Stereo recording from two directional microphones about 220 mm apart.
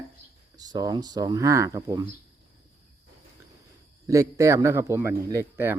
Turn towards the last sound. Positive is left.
turn(degrees=-10)  # may be behind; listen again after turning